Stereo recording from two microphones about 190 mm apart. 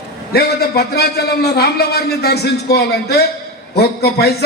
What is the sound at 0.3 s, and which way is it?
A man's voice, 55° left (ahead or behind).